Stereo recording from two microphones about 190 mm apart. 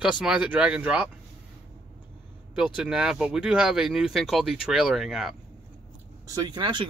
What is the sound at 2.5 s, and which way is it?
Speech, 5° right (ahead or behind).